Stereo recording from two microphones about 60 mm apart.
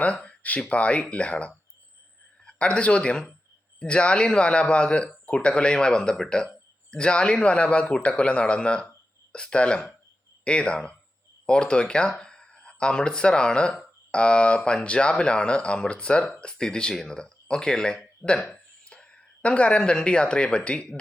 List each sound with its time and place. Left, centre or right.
0.0 s speech: left